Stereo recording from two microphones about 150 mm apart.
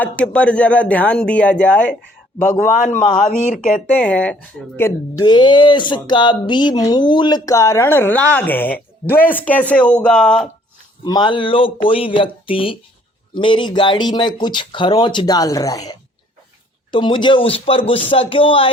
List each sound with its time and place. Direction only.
0.0 s speech: 10° left (ahead or behind)
2.4 s a man's voice: 60° left (ahead or behind)
3.9 s speech: 10° left (ahead or behind)
5.1 s speech: 30° left (ahead or behind); by 10.5 s 5° left (ahead or behind)
11.0 s speech: 30° left (ahead or behind)